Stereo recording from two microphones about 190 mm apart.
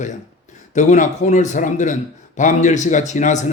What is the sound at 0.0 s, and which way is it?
Speech, 40° left (ahead or behind).